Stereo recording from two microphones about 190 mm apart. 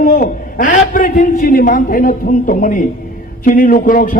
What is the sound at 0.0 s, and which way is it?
A man's voice, 50° left (ahead or behind).